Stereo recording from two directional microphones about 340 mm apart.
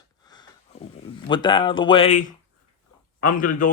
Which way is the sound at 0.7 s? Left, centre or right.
Centre.